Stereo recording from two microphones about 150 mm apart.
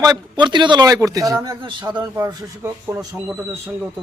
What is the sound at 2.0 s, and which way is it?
Speech, 20° right (ahead or behind).